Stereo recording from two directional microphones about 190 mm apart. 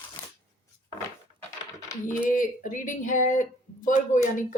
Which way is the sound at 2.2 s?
45° left (ahead or behind).